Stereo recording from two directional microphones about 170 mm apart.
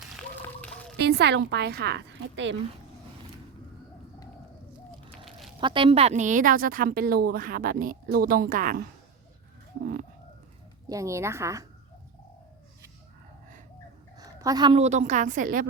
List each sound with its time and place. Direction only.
0.2 s a sound: 5° left (ahead or behind)
0.9 s speech: 75° right (ahead or behind)
5.5 s speech: 30° right (ahead or behind); by 8.8 s 55° right (ahead or behind)
9.8 s speech: 55° right (ahead or behind)
10.8 s a woman's voice: 20° right (ahead or behind)
14.2 s dog: 20° right (ahead or behind)
14.8 s a woman's voice: 45° right (ahead or behind)